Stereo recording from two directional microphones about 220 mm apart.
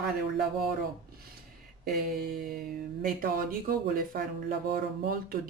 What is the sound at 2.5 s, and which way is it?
Speech, 40° right (ahead or behind).